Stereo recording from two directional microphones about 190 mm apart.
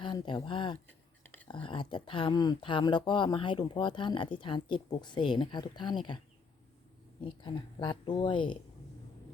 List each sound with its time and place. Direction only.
0.0 s speech: 25° left (ahead or behind)
7.3 s speech: 25° left (ahead or behind)